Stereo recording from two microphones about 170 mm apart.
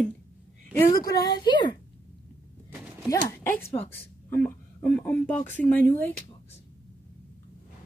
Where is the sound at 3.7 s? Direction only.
10° left (ahead or behind).